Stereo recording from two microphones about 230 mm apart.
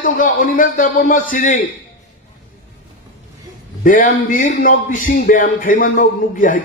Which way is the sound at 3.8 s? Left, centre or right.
Left.